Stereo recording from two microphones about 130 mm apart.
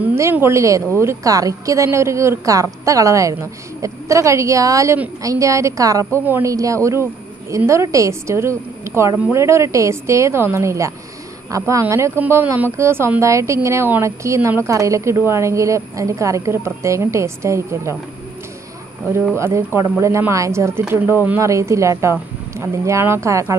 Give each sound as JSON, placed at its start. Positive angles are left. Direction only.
{"t": 0.0, "sound": "speech", "side_deg": -20}
{"t": 19.3, "sound": "speech", "side_deg": -20}